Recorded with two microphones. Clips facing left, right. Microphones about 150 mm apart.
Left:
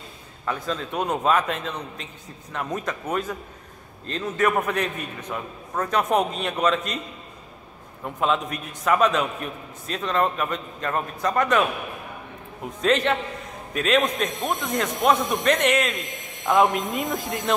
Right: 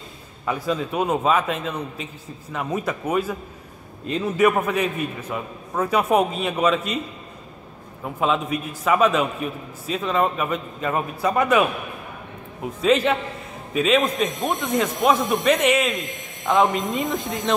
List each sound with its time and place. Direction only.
0.5 s a man's voice: 10° right (ahead or behind)
8.0 s a man's voice: 5° right (ahead or behind)
12.8 s a man's voice: 5° right (ahead or behind)